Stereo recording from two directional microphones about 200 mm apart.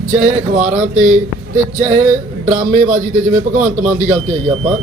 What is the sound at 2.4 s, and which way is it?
Speech, 40° right (ahead or behind).